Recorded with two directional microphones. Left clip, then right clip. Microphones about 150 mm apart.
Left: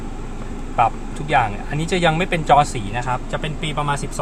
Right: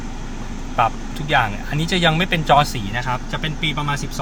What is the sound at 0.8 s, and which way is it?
Speech, 5° left (ahead or behind).